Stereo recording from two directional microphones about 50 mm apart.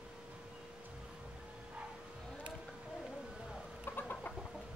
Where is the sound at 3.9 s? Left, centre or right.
Left.